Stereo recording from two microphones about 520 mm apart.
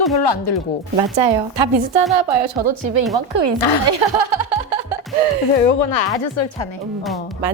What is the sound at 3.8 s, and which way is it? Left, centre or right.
Laughter, right.